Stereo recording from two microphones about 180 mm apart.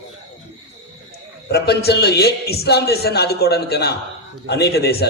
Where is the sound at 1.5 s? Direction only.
65° left (ahead or behind).